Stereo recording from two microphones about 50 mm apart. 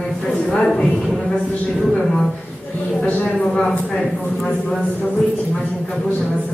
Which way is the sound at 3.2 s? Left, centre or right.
Centre.